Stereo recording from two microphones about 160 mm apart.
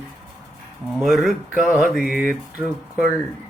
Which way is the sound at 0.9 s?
Centre (ahead or behind).